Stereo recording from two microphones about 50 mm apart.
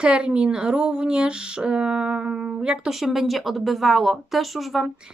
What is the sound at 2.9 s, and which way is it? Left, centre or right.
Speech, centre.